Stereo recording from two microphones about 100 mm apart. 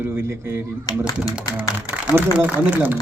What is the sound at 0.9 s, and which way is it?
Speech, 40° left (ahead or behind).